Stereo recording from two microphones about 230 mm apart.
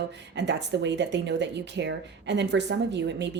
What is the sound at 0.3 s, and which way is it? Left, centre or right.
Speech, right.